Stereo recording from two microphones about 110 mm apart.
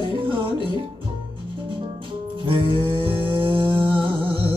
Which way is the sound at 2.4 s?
50° right (ahead or behind).